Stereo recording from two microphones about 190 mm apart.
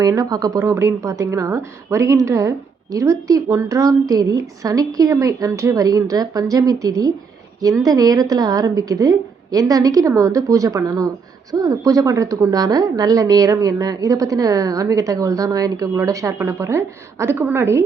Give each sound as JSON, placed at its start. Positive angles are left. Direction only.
{"t": 0.0, "sound": "a woman's voice", "side_deg": -20}